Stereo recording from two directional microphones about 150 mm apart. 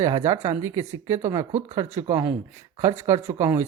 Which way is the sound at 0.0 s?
20° right (ahead or behind).